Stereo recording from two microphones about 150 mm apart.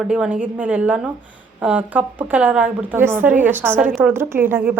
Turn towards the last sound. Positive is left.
turn(degrees=-15)  # may be behind; listen again after turning